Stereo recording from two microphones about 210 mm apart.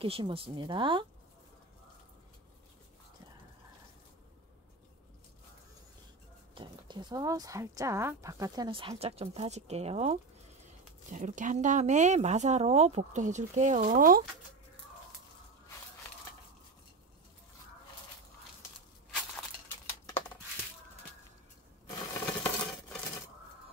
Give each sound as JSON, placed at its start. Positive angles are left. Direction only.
{"t": 0.0, "sound": "speech", "side_deg": -25}
{"t": 6.5, "sound": "speech", "side_deg": -20}
{"t": 20.1, "sound": "a sound", "side_deg": 10}
{"t": 21.8, "sound": "coin", "side_deg": 10}